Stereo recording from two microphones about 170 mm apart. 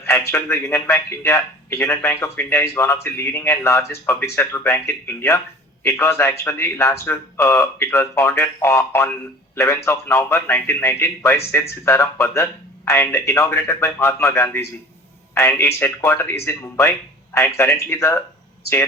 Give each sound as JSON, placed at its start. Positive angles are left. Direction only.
{"t": 0.1, "sound": "a man's voice", "side_deg": 15}